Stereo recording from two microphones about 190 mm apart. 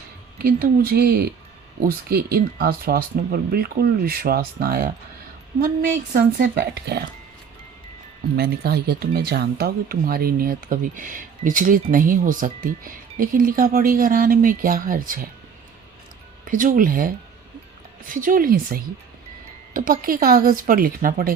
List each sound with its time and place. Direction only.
0.4 s speech: 50° right (ahead or behind)
6.1 s speech: 50° right (ahead or behind)
8.4 s speech: 55° right (ahead or behind)
16.5 s speech: 45° right (ahead or behind)
18.1 s speech: 45° right (ahead or behind)